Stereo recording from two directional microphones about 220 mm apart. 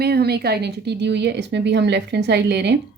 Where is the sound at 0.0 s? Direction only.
45° right (ahead or behind).